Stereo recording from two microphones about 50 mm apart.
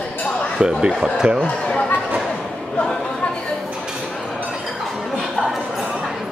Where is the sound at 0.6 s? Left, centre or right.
Centre.